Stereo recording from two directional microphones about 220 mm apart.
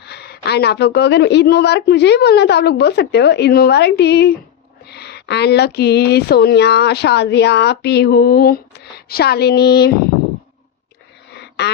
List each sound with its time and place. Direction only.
0.0 s speech: 50° left (ahead or behind)
11.3 s wheeze: 50° left (ahead or behind)